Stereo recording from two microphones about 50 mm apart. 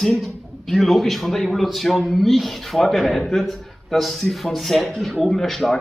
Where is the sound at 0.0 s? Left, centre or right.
Centre.